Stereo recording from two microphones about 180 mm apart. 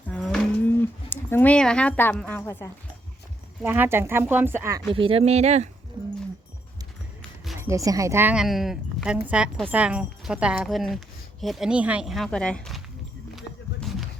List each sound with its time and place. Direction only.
0.1 s cattle: 5° left (ahead or behind)
0.7 s speech: 10° left (ahead or behind)
3.6 s speech: 10° right (ahead or behind)
4.9 s speech: 30° right (ahead or behind)
7.6 s speech: 15° right (ahead or behind); by 12.8 s 5° left (ahead or behind)
13.3 s a sound: centre (ahead or behind)